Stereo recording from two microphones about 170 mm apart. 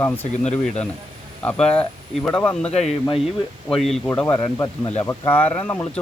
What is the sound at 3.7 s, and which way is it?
Speech, centre (ahead or behind).